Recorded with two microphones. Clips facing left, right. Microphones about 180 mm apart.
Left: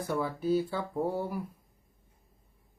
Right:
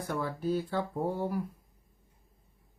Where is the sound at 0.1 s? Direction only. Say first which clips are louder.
Left 3 dB; 10° left (ahead or behind).